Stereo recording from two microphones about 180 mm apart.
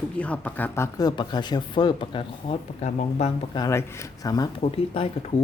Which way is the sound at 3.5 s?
20° left (ahead or behind).